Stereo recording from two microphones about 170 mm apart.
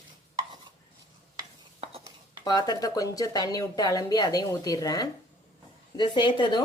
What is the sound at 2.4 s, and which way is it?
Speech, 25° left (ahead or behind).